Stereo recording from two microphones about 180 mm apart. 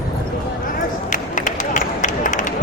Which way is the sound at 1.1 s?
45° left (ahead or behind).